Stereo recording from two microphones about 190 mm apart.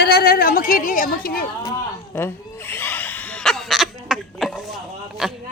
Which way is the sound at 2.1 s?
10° left (ahead or behind).